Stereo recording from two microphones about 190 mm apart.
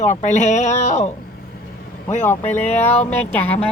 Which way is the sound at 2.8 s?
35° left (ahead or behind).